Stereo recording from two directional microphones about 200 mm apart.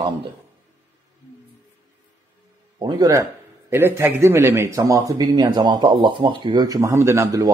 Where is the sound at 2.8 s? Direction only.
20° right (ahead or behind).